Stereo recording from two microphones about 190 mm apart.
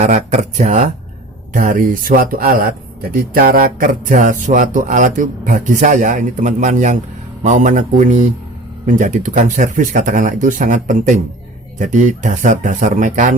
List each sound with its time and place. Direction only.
0.0 s speech: 40° right (ahead or behind)